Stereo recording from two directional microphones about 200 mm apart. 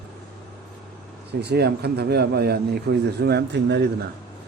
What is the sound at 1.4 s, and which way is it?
A man's voice, 55° right (ahead or behind).